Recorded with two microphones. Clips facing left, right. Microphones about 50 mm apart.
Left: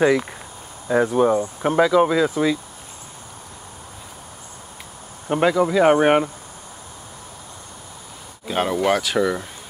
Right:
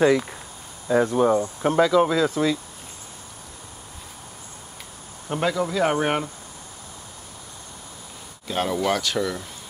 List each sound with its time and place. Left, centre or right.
0.8 s speech: centre
5.3 s speech: left
8.5 s speech: centre